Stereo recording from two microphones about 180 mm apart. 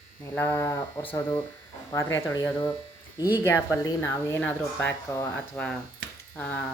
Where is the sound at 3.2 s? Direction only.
10° right (ahead or behind).